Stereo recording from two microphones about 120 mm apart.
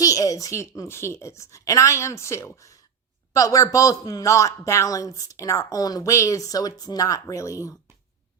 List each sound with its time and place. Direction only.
0.0 s a man's voice: 30° left (ahead or behind)